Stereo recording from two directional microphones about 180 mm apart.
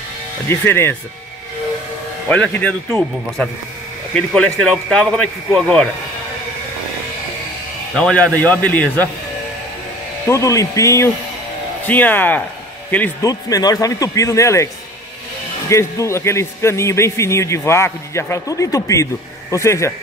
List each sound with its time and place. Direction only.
0.5 s a man's voice: 15° left (ahead or behind)
2.2 s a man's voice: 10° left (ahead or behind)
7.9 s a man's voice: 5° left (ahead or behind)
10.2 s a man's voice: 15° left (ahead or behind)
13.3 s speech: 20° left (ahead or behind)
15.7 s a man's voice: 15° left (ahead or behind)